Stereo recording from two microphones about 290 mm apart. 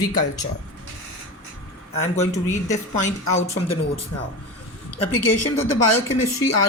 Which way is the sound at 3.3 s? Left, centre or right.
Left.